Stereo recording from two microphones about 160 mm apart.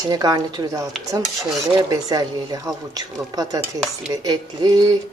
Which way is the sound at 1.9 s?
25° right (ahead or behind).